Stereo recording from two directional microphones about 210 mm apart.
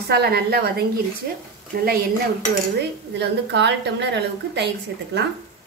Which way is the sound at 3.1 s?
55° right (ahead or behind).